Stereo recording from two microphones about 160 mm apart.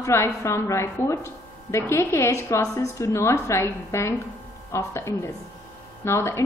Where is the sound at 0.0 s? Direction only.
20° left (ahead or behind).